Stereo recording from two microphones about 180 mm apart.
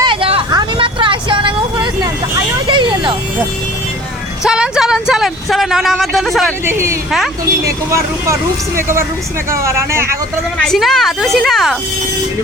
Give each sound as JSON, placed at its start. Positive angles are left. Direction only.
{"t": 0.0, "sound": "vehicle", "side_deg": -30}
{"t": 4.4, "sound": "speech", "side_deg": -5}
{"t": 6.7, "sound": "speech", "side_deg": -15}
{"t": 10.6, "sound": "a woman's voice", "side_deg": 0}